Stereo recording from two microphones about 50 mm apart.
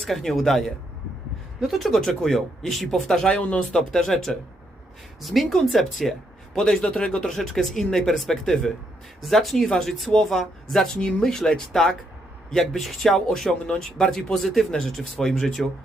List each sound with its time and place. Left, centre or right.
0.0 s speech: centre
3.2 s speech: centre
3.8 s speech: centre